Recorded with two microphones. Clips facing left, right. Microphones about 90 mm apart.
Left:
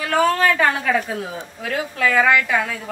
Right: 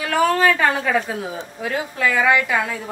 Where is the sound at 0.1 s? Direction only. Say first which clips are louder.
Even; 10° right (ahead or behind).